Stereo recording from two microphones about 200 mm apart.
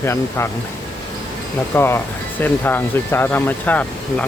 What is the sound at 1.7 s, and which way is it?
Speech, 10° left (ahead or behind).